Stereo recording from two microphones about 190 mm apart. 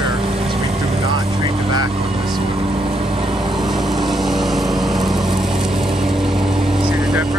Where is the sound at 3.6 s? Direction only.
Centre (ahead or behind).